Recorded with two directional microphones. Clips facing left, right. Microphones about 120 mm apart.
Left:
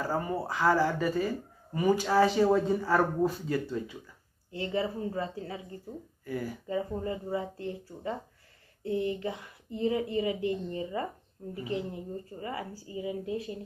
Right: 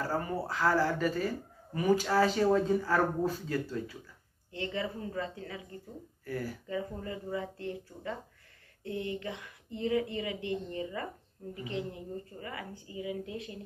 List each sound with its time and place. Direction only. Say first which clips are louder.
0.0 s speech: left 2 dB; 10° left (ahead or behind)
4.5 s speech: left 4 dB; 30° left (ahead or behind)
6.2 s speech: left 2 dB; 10° left (ahead or behind)
6.7 s speech: left 6 dB; 25° left (ahead or behind)
12.4 s speech: left 5 dB; 30° left (ahead or behind)